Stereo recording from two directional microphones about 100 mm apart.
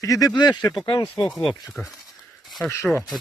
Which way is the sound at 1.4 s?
10° left (ahead or behind).